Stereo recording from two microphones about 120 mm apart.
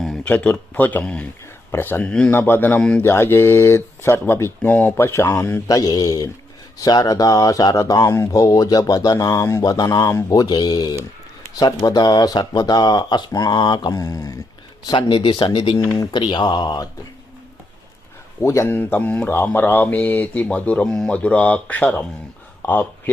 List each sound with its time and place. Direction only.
0.3 s speech: 15° left (ahead or behind); by 14.3 s 30° left (ahead or behind)
14.8 s speech: 45° left (ahead or behind)
18.4 s speech: 25° left (ahead or behind)